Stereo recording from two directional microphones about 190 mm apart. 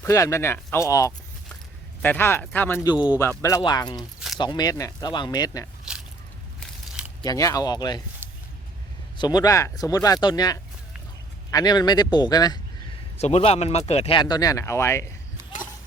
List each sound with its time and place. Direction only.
0.0 s speech: 15° left (ahead or behind)
2.9 s speech: 20° left (ahead or behind)
7.2 s speech: 20° left (ahead or behind)
9.1 s speech: 20° left (ahead or behind)
13.1 s speech: 35° left (ahead or behind); by 15.1 s 15° left (ahead or behind)